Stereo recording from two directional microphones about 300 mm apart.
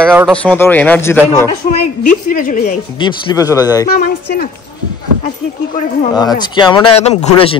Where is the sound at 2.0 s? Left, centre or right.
Left.